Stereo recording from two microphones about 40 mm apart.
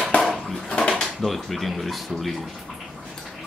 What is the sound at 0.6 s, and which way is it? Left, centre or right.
Speech, centre.